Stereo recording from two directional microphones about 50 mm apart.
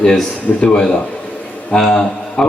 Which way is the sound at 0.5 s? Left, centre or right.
Left.